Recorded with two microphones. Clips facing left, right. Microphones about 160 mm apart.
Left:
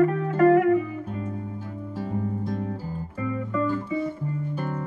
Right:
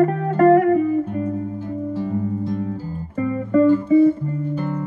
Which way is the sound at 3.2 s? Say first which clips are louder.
Right 11 dB; 45° right (ahead or behind).